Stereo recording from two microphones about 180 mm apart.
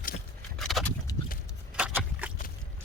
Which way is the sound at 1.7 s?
5° right (ahead or behind).